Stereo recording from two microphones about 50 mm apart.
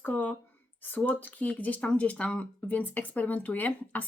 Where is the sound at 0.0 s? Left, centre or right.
Left.